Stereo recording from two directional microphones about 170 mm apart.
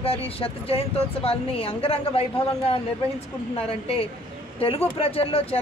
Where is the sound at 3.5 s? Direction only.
35° left (ahead or behind).